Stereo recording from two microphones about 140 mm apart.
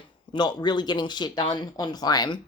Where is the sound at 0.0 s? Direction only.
35° left (ahead or behind).